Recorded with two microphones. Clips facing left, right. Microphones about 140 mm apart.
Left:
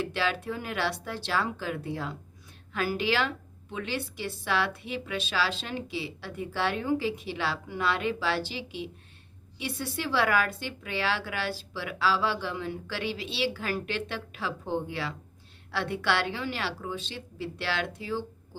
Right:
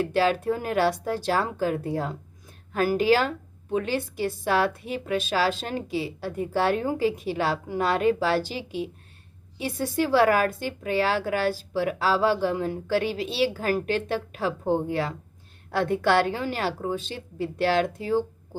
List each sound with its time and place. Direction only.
0.0 s a woman's voice: 45° right (ahead or behind)